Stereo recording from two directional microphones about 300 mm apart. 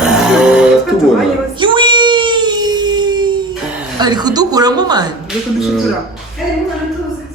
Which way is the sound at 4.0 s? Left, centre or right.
Centre.